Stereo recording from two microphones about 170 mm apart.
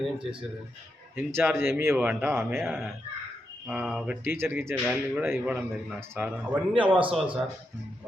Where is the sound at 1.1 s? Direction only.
15° right (ahead or behind).